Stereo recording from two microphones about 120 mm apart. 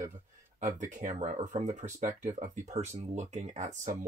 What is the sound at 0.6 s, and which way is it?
Speech, 90° right.